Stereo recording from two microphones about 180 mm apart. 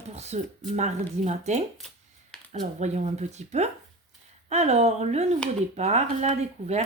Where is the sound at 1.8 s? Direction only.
Centre (ahead or behind).